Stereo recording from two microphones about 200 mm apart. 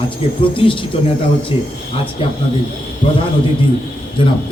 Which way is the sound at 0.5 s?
25° left (ahead or behind).